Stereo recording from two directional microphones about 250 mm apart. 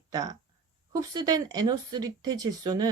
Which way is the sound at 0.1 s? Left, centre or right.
Centre.